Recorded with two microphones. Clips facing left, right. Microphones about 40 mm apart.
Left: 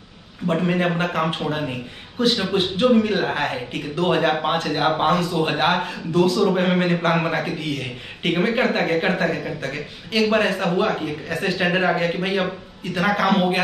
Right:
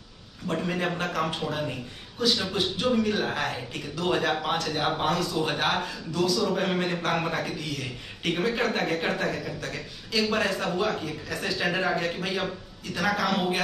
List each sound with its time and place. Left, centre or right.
0.5 s a man's voice: left